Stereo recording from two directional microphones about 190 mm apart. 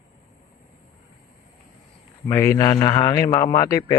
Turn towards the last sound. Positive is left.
turn(degrees=20)  # may be behind; listen again after turning